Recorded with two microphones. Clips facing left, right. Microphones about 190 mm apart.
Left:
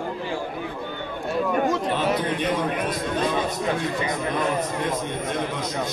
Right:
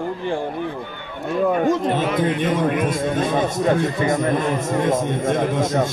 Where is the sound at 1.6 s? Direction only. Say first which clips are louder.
Right 4 dB; 50° right (ahead or behind).